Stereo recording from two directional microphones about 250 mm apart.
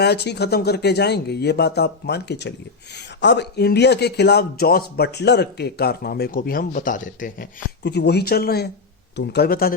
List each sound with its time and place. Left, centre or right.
0.0 s speech: left